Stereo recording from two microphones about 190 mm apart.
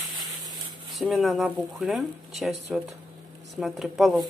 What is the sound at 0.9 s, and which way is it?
Speech, centre (ahead or behind).